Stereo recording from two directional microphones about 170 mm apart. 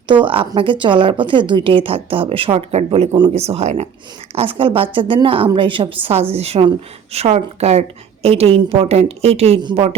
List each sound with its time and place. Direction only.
0.1 s a woman's voice: 30° right (ahead or behind)